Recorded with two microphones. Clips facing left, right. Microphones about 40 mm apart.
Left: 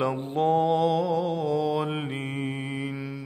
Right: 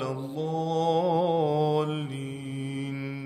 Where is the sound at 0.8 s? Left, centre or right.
Centre.